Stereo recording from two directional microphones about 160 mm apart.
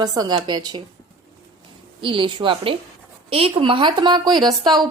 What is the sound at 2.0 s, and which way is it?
A woman's voice, 30° right (ahead or behind).